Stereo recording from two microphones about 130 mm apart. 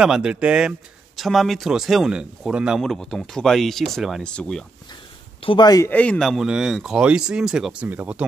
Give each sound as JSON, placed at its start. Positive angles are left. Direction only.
{"t": 0.0, "sound": "speech", "side_deg": -5}
{"t": 5.4, "sound": "speech", "side_deg": 45}
{"t": 5.9, "sound": "speech", "side_deg": 10}